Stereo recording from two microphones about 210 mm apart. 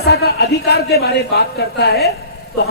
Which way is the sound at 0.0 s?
50° left (ahead or behind).